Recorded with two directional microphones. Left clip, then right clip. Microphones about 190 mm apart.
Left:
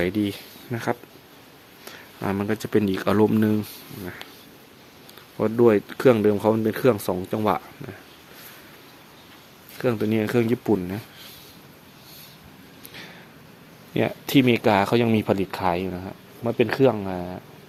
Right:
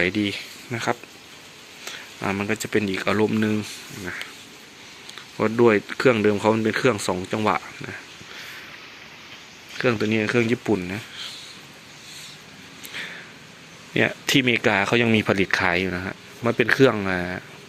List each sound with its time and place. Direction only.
0.0 s speech: 15° left (ahead or behind)
5.4 s speech: centre (ahead or behind)
9.7 s speech: centre (ahead or behind)
10.1 s speech: 15° left (ahead or behind)
12.9 s a sound: 10° left (ahead or behind)
13.9 s speech: 5° left (ahead or behind); by 17.4 s 10° right (ahead or behind)